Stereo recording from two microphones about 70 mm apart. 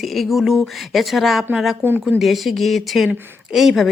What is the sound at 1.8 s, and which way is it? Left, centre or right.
Speech, right.